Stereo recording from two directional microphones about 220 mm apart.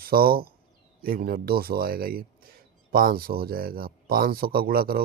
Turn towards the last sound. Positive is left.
turn(degrees=-45)  # may be behind; listen again after turning